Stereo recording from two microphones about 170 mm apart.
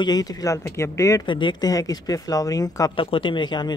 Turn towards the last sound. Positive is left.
turn(degrees=25)  # may be behind; listen again after turning